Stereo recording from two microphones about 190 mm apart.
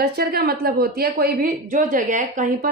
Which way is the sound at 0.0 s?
55° right (ahead or behind).